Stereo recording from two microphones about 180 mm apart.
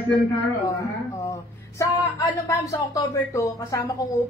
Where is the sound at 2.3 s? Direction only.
15° left (ahead or behind).